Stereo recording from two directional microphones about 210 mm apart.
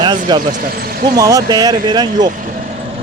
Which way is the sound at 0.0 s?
20° right (ahead or behind).